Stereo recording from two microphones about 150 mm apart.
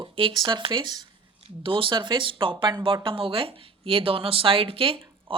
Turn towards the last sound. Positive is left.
turn(degrees=-40)  # may be behind; listen again after turning